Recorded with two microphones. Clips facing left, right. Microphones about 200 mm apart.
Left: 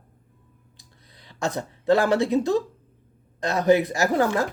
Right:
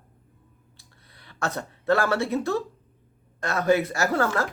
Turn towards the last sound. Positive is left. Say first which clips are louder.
# left 3 dB
turn(degrees=15)  # may be behind; listen again after turning